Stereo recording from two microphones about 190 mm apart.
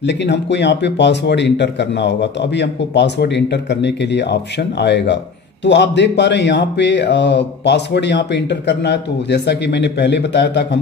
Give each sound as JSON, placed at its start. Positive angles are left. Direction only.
{"t": 0.0, "sound": "a man's voice", "side_deg": 65}